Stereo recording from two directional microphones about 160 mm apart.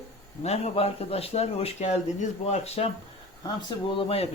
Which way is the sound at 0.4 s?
40° left (ahead or behind).